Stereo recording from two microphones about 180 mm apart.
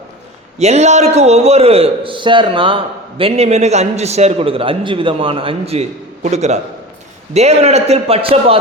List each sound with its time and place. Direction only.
0.6 s a man's voice: 40° right (ahead or behind)